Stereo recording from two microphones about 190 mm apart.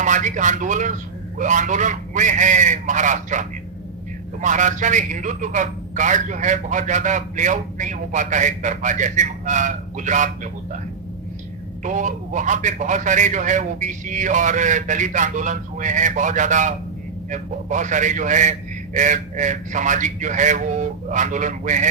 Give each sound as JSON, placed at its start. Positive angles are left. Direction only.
{"t": 0.0, "sound": "a man's voice", "side_deg": -40}
{"t": 11.8, "sound": "a man's voice", "side_deg": -40}